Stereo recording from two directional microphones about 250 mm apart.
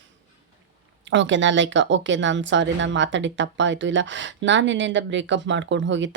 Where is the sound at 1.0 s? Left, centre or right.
Right.